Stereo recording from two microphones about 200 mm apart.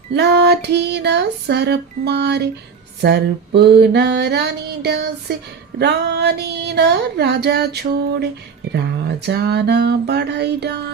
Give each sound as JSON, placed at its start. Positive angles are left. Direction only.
{"t": 0.1, "sound": "female singing", "side_deg": -60}
{"t": 5.3, "sound": "speech", "side_deg": -55}
{"t": 5.8, "sound": "female singing", "side_deg": -55}